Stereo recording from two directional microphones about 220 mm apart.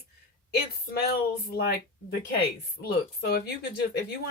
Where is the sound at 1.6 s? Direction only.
45° left (ahead or behind).